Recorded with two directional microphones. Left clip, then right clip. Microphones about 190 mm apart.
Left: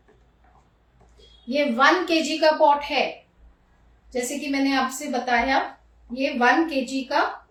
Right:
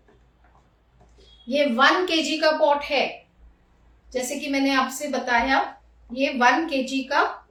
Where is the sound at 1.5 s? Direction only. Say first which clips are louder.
Even; 30° right (ahead or behind).